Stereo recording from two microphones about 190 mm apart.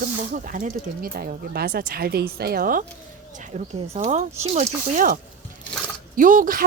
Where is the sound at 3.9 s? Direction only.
35° right (ahead or behind).